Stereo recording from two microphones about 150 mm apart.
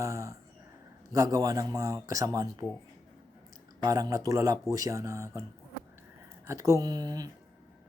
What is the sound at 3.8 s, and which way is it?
Speech, 25° right (ahead or behind).